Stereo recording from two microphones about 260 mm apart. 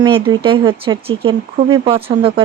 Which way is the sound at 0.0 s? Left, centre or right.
Centre.